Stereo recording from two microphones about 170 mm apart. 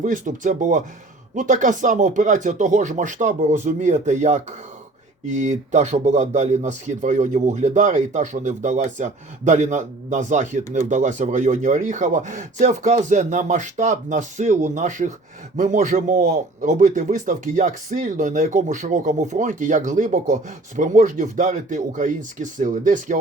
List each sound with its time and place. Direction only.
0.0 s a man's voice: 50° right (ahead or behind)